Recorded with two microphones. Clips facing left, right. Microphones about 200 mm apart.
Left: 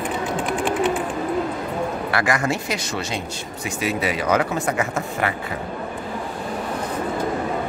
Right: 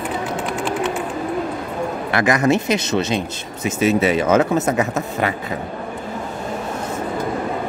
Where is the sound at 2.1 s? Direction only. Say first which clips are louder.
Right 7 dB; 20° right (ahead or behind).